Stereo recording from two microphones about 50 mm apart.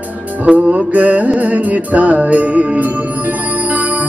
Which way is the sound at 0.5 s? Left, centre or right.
Centre.